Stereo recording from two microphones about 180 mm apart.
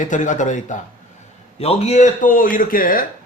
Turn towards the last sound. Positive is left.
turn(degrees=50)  # may be behind; listen again after turning